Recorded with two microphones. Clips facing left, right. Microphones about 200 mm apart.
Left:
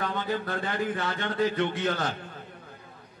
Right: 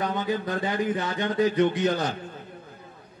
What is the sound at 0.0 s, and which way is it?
A man's voice, 20° right (ahead or behind).